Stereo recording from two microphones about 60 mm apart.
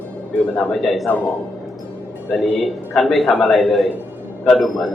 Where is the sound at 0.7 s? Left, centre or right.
Centre.